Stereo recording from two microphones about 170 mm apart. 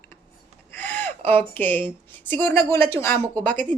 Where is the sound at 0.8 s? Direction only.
10° left (ahead or behind).